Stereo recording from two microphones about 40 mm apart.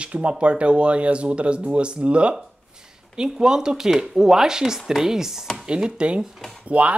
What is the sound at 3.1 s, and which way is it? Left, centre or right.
Speech, centre.